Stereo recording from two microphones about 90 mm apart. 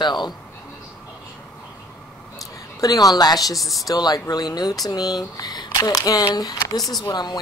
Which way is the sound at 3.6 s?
Centre (ahead or behind).